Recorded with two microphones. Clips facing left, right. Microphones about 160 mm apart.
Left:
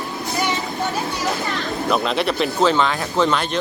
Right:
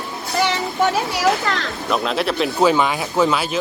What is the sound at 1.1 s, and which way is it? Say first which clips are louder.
Speech: right 5 dB; 90° right.